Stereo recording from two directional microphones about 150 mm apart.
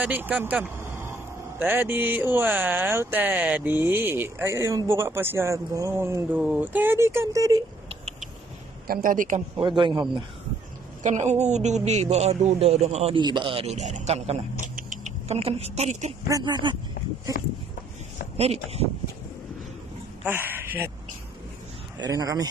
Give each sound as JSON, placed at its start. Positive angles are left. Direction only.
{"t": 0.0, "sound": "speech", "side_deg": -10}
{"t": 8.8, "sound": "a man's voice", "side_deg": -75}
{"t": 9.6, "sound": "a man's voice", "side_deg": -35}
{"t": 11.0, "sound": "a man's voice", "side_deg": -50}
{"t": 14.8, "sound": "a sound", "side_deg": -55}
{"t": 16.3, "sound": "speech", "side_deg": -25}
{"t": 18.4, "sound": "a man's voice", "side_deg": -45}
{"t": 20.2, "sound": "speech", "side_deg": -15}
{"t": 21.9, "sound": "speech", "side_deg": -25}